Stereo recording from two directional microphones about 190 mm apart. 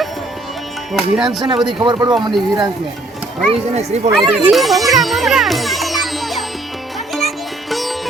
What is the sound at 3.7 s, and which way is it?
Speech, 35° right (ahead or behind).